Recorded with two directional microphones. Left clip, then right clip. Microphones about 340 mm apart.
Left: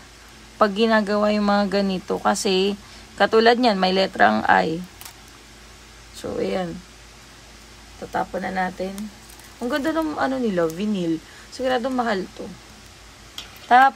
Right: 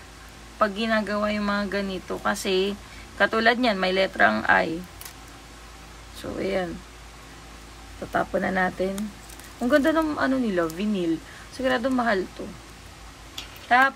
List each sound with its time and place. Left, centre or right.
0.6 s speech: centre
6.4 s speech: centre
8.1 s speech: centre
13.7 s speech: centre